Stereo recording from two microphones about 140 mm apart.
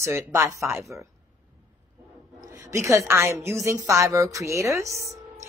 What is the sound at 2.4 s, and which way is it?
A woman's voice, 25° right (ahead or behind).